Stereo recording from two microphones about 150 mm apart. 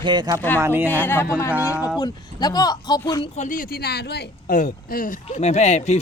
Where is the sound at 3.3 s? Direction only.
60° left (ahead or behind).